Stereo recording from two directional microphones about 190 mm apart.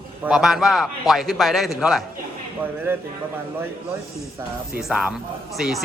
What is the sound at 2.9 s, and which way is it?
Speech, 10° right (ahead or behind).